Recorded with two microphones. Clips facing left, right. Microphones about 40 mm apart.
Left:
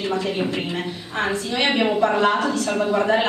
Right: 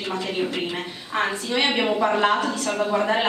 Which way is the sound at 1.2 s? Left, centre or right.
Centre.